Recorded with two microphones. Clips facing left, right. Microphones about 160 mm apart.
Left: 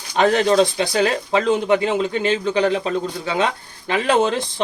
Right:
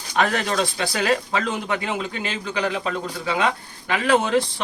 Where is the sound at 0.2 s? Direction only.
25° left (ahead or behind).